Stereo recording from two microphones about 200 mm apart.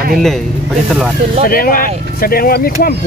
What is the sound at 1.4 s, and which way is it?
Speech, 45° left (ahead or behind).